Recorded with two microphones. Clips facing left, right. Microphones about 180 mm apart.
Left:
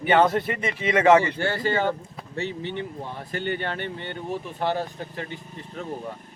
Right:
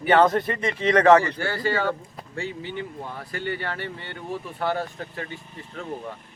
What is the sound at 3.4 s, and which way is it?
Speech, 25° left (ahead or behind).